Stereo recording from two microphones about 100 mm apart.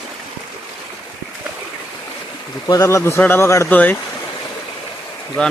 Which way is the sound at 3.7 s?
15° left (ahead or behind).